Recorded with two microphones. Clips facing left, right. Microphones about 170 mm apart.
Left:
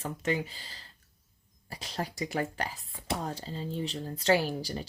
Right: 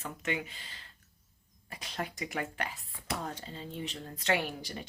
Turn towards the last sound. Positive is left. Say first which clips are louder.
# left 5 dB
turn(degrees=35)  # may be behind; listen again after turning